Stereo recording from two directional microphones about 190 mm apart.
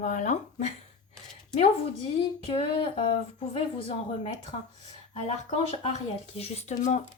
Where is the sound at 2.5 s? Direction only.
30° left (ahead or behind).